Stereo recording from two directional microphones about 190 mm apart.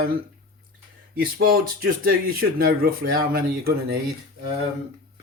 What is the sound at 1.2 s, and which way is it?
Speech, 50° right (ahead or behind).